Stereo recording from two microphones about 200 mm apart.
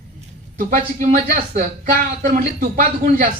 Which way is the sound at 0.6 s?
45° right (ahead or behind).